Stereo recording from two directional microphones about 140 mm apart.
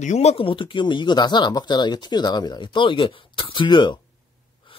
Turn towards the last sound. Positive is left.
turn(degrees=35)  # may be behind; listen again after turning